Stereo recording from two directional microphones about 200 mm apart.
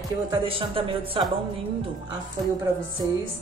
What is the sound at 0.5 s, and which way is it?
Speech, 25° right (ahead or behind).